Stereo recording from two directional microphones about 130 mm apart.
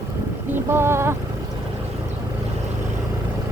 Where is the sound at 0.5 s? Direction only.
20° right (ahead or behind).